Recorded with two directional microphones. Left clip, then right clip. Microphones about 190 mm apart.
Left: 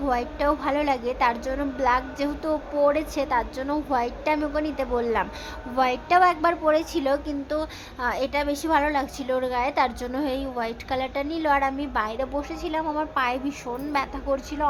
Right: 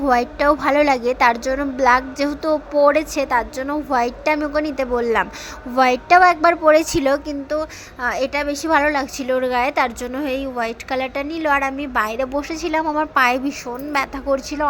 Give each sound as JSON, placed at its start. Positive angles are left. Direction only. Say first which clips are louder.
{"t": 0.0, "sound": "a woman's voice", "louder": "right 8 dB", "side_deg": -20}